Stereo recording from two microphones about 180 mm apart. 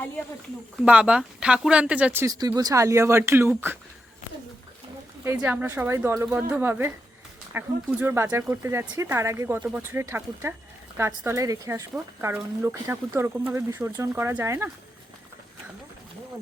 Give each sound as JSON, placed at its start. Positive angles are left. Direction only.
{"t": 0.8, "sound": "speech", "side_deg": -5}
{"t": 2.2, "sound": "speech", "side_deg": -20}
{"t": 5.2, "sound": "speech", "side_deg": -10}